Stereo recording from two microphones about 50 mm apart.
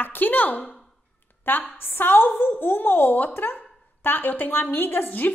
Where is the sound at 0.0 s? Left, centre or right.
Left.